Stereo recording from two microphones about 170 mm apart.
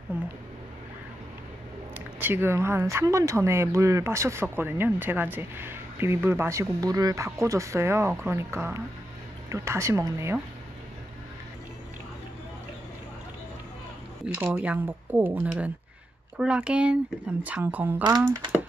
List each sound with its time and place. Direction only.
2.1 s speech: 10° right (ahead or behind)
14.2 s speech: 5° right (ahead or behind)
18.0 s speech: 20° right (ahead or behind)